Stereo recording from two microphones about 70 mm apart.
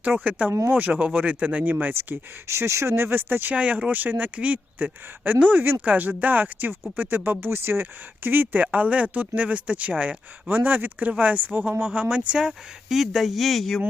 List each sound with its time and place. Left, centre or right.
0.0 s speech: right; by 13.8 s centre